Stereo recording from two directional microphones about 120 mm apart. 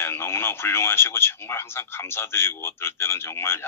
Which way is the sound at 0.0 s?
20° left (ahead or behind).